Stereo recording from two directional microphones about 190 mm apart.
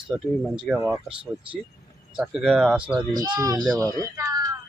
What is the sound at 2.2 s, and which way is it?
Speech, 5° right (ahead or behind).